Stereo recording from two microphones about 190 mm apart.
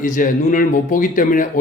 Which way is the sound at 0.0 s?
45° left (ahead or behind).